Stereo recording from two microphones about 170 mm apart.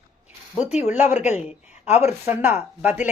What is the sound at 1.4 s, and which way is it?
Speech, 40° left (ahead or behind).